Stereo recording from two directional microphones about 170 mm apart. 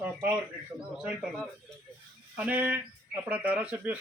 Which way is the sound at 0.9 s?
Centre (ahead or behind).